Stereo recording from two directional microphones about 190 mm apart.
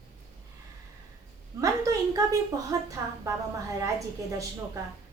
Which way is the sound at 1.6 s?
15° right (ahead or behind).